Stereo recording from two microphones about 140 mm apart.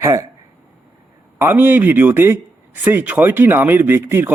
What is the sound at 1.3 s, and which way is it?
A man's voice, 15° right (ahead or behind).